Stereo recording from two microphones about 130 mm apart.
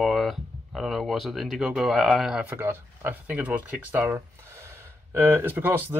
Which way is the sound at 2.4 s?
15° right (ahead or behind).